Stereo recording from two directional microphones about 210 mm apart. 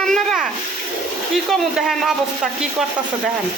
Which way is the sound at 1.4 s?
Centre (ahead or behind).